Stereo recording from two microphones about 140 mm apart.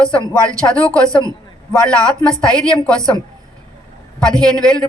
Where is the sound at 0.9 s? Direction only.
25° right (ahead or behind).